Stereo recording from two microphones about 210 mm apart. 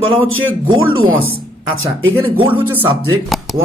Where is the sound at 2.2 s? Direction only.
25° right (ahead or behind).